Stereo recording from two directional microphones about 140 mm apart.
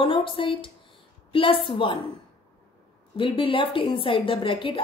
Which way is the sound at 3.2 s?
40° left (ahead or behind).